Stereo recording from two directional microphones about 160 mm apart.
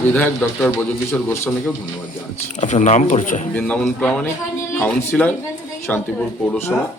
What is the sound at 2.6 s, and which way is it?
Speech, 45° left (ahead or behind).